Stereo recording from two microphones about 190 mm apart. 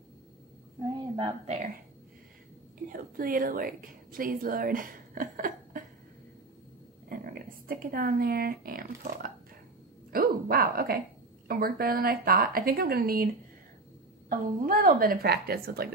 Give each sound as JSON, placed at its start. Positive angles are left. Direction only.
{"t": 0.9, "sound": "a sound", "side_deg": -25}
{"t": 2.9, "sound": "a woman's voice", "side_deg": -50}
{"t": 7.1, "sound": "a woman's voice", "side_deg": -50}
{"t": 14.3, "sound": "a woman's voice", "side_deg": -45}